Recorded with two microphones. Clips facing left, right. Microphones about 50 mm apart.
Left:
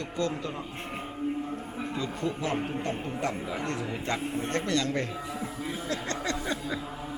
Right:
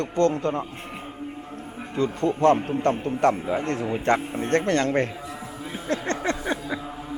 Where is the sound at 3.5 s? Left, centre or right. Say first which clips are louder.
Right 7 dB; right.